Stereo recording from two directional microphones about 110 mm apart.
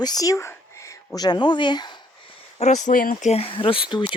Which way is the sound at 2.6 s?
90° left.